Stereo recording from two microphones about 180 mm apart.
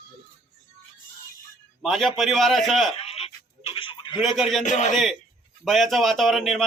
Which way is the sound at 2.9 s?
35° left (ahead or behind).